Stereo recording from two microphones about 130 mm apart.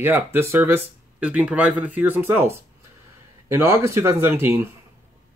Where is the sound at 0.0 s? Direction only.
15° right (ahead or behind).